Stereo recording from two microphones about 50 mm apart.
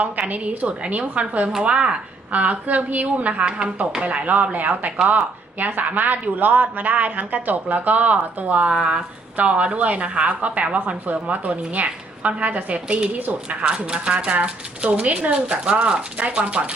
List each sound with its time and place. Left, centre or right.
0.3 s speech: right